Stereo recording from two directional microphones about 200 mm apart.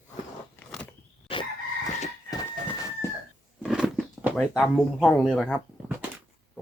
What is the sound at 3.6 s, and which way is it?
Biting, centre (ahead or behind).